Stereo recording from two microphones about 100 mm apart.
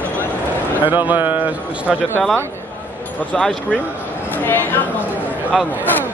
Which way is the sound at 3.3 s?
10° left (ahead or behind).